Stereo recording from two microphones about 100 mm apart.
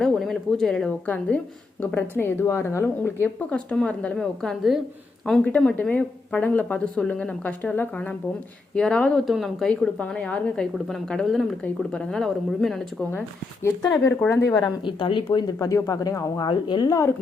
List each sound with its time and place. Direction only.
0.0 s speech: 5° left (ahead or behind)
1.0 s a woman's voice: 15° left (ahead or behind)
5.5 s a woman's voice: 15° left (ahead or behind)
13.0 s speech: 20° left (ahead or behind)
13.8 s speech: 40° left (ahead or behind)
14.3 s speech: 25° left (ahead or behind)
14.6 s a woman's voice: 55° left (ahead or behind)
15.5 s speech: 30° left (ahead or behind)
16.5 s a woman's voice: 50° left (ahead or behind)
16.9 s speech: 30° left (ahead or behind)